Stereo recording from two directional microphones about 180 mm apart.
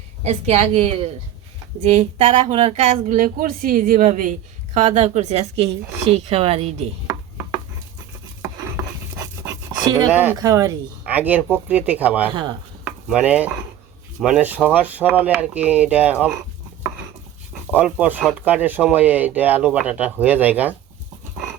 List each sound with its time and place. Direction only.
0.3 s speech: 35° right (ahead or behind)
8.4 s a sound: 15° right (ahead or behind)
10.1 s speech: 10° right (ahead or behind)
12.3 s chopping: 25° right (ahead or behind)
12.8 s stir: 5° right (ahead or behind)
14.2 s speech: 5° right (ahead or behind)
17.5 s speech: 5° right (ahead or behind)